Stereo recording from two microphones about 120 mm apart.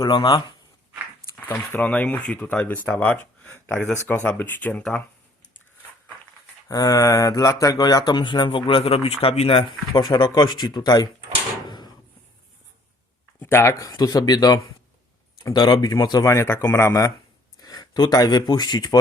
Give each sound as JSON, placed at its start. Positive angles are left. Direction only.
{"t": 0.0, "sound": "speech", "side_deg": 40}
{"t": 1.5, "sound": "speech", "side_deg": 20}
{"t": 6.7, "sound": "speech", "side_deg": 30}
{"t": 10.0, "sound": "speech", "side_deg": 35}
{"t": 13.4, "sound": "speech", "side_deg": 20}